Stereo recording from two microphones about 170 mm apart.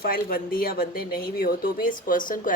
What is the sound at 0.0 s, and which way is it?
A woman's voice, 60° left (ahead or behind).